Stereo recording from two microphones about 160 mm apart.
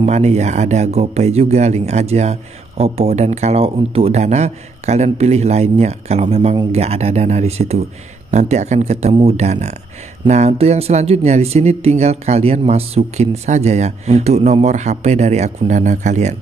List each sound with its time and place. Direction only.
0.0 s speech: 45° right (ahead or behind)